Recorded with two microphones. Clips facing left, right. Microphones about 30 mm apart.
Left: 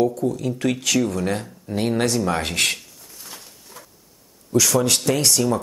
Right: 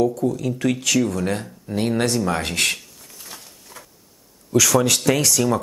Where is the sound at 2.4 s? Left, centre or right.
Left.